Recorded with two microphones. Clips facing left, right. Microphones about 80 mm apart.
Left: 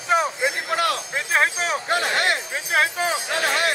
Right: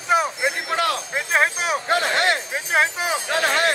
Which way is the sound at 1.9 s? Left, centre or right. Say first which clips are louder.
Right 2 dB; right.